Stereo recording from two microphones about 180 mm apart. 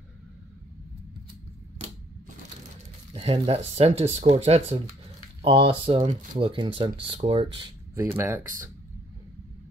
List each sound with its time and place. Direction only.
3.1 s speech: 35° right (ahead or behind)
7.9 s speech: 15° right (ahead or behind)